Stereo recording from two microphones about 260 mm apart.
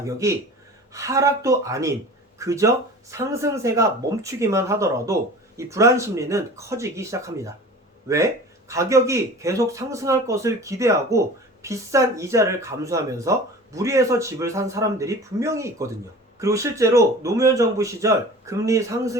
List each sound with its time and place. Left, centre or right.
0.0 s a man's voice: centre